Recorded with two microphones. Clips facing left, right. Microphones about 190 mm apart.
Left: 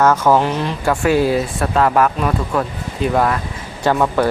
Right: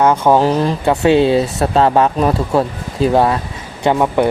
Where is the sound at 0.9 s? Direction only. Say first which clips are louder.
Right 3 dB; 25° right (ahead or behind).